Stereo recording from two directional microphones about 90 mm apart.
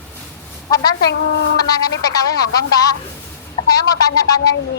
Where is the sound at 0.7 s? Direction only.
45° left (ahead or behind).